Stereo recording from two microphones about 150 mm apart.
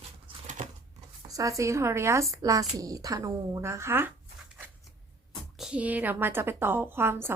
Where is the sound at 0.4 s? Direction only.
50° right (ahead or behind).